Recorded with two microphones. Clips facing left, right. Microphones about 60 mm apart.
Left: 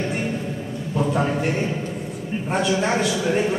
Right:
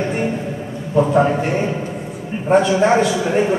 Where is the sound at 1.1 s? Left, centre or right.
Centre.